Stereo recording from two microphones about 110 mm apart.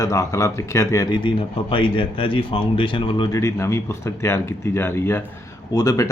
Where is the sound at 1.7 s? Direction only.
50° left (ahead or behind).